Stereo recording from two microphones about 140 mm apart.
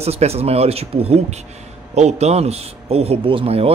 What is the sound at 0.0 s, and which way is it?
A man's voice, 50° right (ahead or behind).